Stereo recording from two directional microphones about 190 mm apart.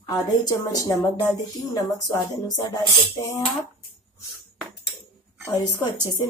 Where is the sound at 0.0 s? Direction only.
20° left (ahead or behind).